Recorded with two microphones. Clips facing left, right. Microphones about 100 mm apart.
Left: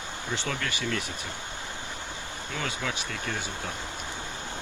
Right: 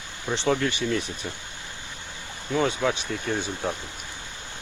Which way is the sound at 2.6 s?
25° right (ahead or behind).